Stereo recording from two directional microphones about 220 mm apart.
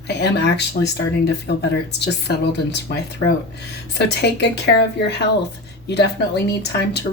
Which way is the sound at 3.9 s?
50° left (ahead or behind).